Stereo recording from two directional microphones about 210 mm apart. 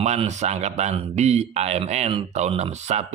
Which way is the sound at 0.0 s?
30° right (ahead or behind).